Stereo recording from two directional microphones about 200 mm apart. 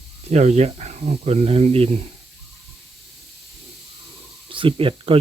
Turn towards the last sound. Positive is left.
turn(degrees=-30)  # may be behind; listen again after turning